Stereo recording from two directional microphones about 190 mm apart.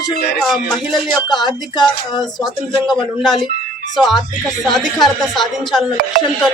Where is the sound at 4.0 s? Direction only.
Centre (ahead or behind).